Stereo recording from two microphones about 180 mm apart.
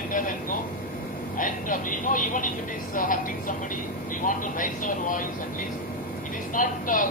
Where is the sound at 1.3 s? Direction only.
50° left (ahead or behind).